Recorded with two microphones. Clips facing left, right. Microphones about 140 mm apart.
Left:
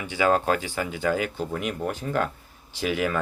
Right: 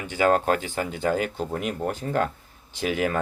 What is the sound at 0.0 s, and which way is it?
Speech, 45° right (ahead or behind).